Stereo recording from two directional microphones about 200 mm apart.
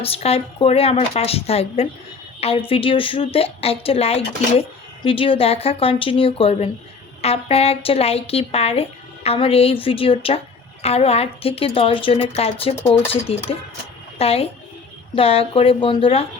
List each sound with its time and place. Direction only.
0.0 s a woman's voice: 30° left (ahead or behind)